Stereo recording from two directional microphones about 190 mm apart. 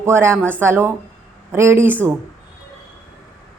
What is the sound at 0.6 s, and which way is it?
A woman's voice, 15° right (ahead or behind).